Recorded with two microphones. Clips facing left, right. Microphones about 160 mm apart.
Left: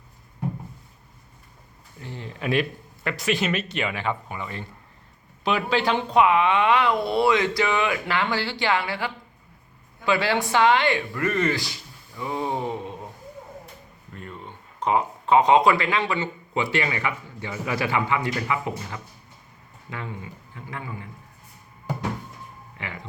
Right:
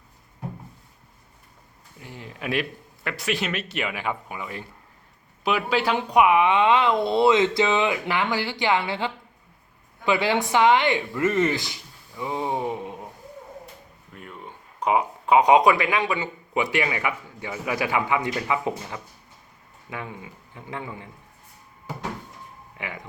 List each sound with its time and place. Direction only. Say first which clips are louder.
2.0 s speech: left 3 dB; 10° right (ahead or behind)
14.2 s speech: left 1 dB; 5° right (ahead or behind)
22.8 s speech: right 1 dB; 15° right (ahead or behind)